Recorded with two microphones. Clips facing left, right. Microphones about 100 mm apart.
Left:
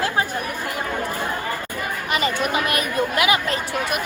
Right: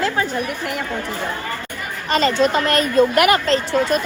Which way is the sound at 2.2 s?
15° left (ahead or behind).